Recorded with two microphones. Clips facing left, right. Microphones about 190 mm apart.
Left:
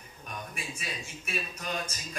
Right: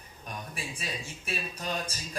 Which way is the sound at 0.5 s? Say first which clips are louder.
Right 2 dB; 35° right (ahead or behind).